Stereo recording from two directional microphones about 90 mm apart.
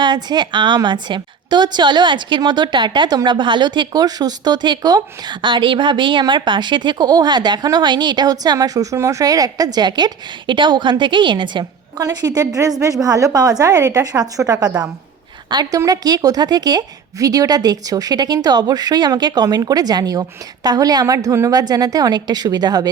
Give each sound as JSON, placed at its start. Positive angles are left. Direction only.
{"t": 0.0, "sound": "speech", "side_deg": -55}
{"t": 12.1, "sound": "a woman's voice", "side_deg": -45}